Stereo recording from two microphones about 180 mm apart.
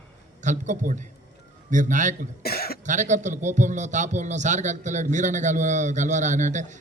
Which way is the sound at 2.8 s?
45° right (ahead or behind).